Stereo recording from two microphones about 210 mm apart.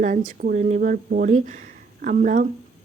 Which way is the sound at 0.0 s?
40° right (ahead or behind).